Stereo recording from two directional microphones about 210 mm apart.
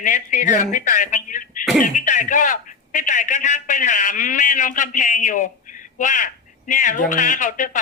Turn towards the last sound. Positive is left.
turn(degrees=40)  # may be behind; listen again after turning